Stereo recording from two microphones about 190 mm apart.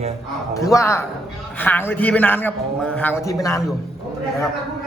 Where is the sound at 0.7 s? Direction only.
15° left (ahead or behind).